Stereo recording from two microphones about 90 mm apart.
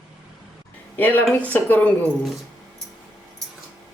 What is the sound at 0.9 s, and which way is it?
Speech, 20° left (ahead or behind).